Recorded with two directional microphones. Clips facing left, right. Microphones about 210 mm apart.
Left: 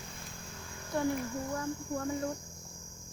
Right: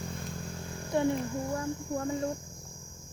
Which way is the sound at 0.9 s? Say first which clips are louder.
Right 4 dB; 25° right (ahead or behind).